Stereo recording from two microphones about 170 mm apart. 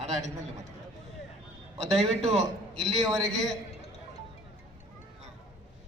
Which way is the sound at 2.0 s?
35° right (ahead or behind).